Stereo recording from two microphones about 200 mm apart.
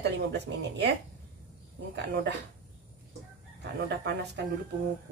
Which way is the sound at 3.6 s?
55° right (ahead or behind).